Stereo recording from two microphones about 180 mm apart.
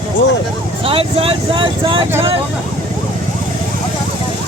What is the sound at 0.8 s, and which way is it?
Vehicle, 30° right (ahead or behind).